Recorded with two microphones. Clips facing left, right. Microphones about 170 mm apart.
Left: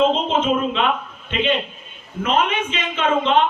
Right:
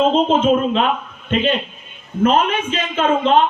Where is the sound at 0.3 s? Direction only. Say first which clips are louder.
Right 4 dB; 40° right (ahead or behind).